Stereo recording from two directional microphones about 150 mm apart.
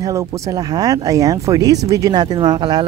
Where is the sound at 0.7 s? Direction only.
25° right (ahead or behind).